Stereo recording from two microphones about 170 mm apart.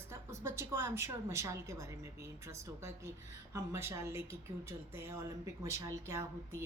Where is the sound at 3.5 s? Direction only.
15° right (ahead or behind).